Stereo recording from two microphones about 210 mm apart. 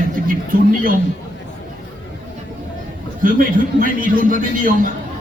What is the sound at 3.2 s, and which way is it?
A man's voice, 40° right (ahead or behind).